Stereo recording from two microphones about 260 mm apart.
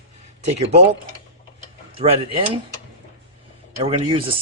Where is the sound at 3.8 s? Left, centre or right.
Centre.